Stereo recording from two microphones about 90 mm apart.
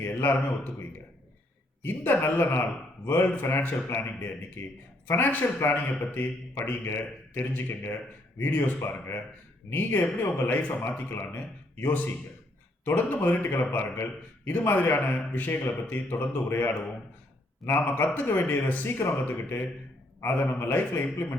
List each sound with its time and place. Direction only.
0.3 s a man's voice: 20° left (ahead or behind)
18.9 s speech: 35° left (ahead or behind)
19.2 s a man's voice: 20° left (ahead or behind)